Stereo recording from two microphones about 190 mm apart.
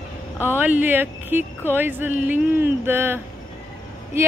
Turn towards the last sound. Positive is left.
turn(degrees=-10)  # may be behind; listen again after turning